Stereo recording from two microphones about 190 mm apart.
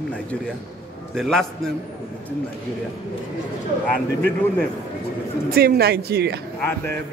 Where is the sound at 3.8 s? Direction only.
10° left (ahead or behind).